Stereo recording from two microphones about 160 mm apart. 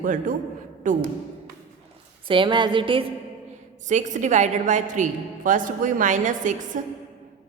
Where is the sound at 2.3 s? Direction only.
30° right (ahead or behind).